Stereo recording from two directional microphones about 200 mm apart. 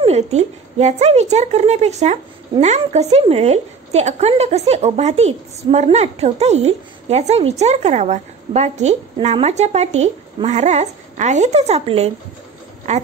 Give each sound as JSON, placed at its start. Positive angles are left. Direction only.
{"t": 0.0, "sound": "a woman's voice", "side_deg": -35}